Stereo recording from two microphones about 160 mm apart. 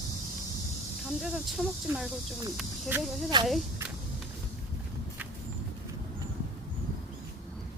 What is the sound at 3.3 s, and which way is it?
Speech, 25° right (ahead or behind).